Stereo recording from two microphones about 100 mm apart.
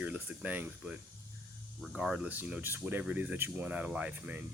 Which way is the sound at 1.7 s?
Centre (ahead or behind).